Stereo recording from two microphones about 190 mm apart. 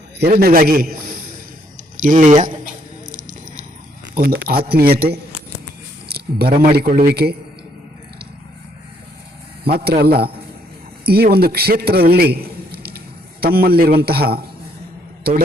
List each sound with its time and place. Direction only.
0.2 s speech: 55° right (ahead or behind)
3.1 s a sound: 45° right (ahead or behind)
4.1 s speech: 55° right (ahead or behind)
6.1 s a sound: 55° right (ahead or behind)
6.7 s speech: 50° right (ahead or behind)
9.6 s a man's voice: 55° right (ahead or behind)
11.0 s a man's voice: 55° right (ahead or behind)